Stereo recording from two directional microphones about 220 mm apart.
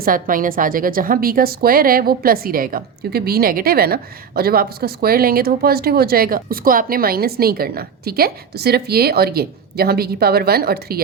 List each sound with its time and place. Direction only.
0.0 s a woman's voice: 40° right (ahead or behind)